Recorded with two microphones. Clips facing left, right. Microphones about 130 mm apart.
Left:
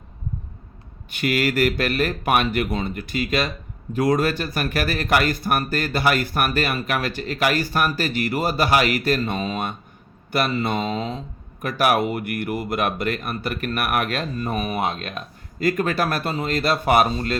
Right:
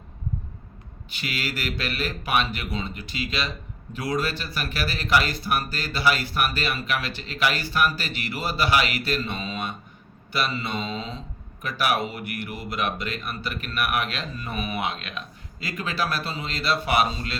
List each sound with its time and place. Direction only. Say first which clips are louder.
1.1 s speech: left 10 dB; 50° left (ahead or behind)